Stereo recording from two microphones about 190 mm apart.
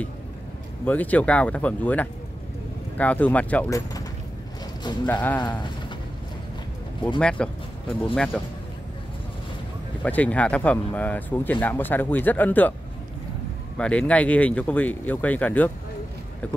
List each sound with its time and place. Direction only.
0.8 s speech: 10° left (ahead or behind)
7.2 s speech: 5° left (ahead or behind)
10.0 s speech: 10° left (ahead or behind)
13.7 s speech: 5° left (ahead or behind)